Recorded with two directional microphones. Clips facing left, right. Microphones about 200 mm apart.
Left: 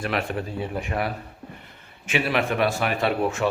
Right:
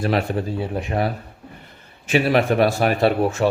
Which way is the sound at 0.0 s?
35° right (ahead or behind).